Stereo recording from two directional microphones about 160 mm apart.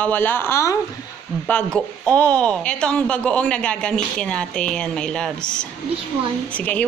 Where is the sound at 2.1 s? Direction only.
5° left (ahead or behind).